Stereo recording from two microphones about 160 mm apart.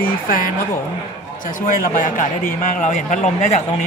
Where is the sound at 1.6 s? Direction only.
55° left (ahead or behind).